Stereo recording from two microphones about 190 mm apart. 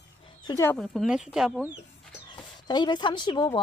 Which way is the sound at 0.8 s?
Centre (ahead or behind).